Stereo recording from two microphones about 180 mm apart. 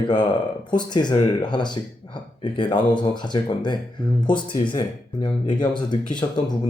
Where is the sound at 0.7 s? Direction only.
25° left (ahead or behind).